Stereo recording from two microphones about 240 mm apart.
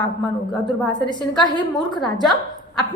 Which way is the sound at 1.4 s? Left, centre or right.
Centre.